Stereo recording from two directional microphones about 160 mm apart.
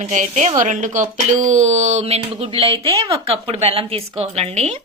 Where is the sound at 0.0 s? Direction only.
50° right (ahead or behind).